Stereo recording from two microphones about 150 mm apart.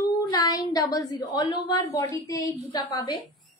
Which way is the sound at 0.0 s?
30° left (ahead or behind).